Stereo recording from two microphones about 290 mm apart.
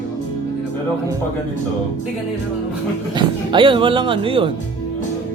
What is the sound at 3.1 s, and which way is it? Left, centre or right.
Speech, centre.